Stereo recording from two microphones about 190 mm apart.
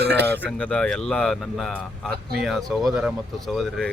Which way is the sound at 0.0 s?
65° right (ahead or behind).